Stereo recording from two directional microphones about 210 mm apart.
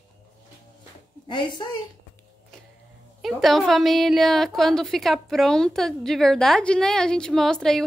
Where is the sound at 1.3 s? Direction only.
20° left (ahead or behind).